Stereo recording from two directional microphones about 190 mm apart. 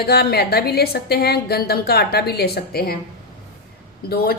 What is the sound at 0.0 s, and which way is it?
A woman's voice, 55° left (ahead or behind).